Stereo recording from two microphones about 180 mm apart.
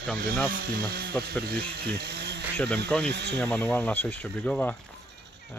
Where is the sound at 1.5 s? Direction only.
65° right (ahead or behind).